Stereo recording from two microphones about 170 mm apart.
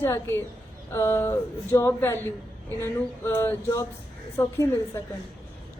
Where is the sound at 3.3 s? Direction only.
15° left (ahead or behind).